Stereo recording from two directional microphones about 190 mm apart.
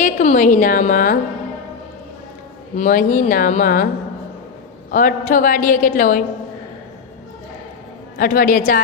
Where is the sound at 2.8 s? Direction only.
45° left (ahead or behind).